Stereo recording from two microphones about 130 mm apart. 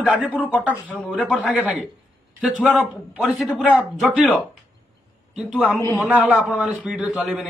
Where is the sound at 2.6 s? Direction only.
5° right (ahead or behind).